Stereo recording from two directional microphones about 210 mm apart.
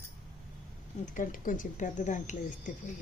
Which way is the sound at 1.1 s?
40° left (ahead or behind).